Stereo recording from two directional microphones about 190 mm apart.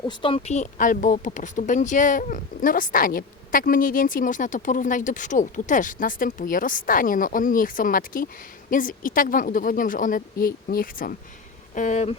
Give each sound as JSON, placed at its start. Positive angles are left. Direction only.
{"t": 0.0, "sound": "speech", "side_deg": 25}